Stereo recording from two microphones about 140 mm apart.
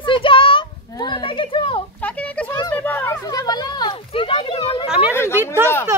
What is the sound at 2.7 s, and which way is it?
Children playing, 10° left (ahead or behind).